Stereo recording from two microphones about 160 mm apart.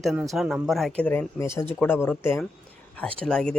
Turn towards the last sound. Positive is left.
turn(degrees=5)  # may be behind; listen again after turning